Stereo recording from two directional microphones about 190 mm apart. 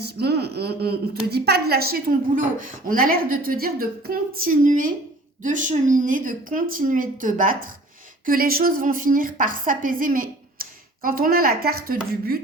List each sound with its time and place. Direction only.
0.0 s a woman's voice: 60° right (ahead or behind)